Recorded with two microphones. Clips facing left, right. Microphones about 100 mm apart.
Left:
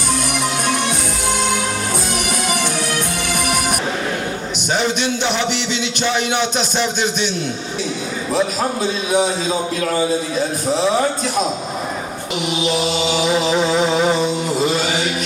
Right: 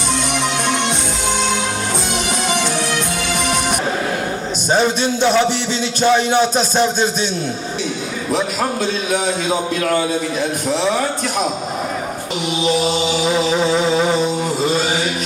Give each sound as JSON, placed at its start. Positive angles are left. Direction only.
{"t": 4.7, "sound": "music", "side_deg": -40}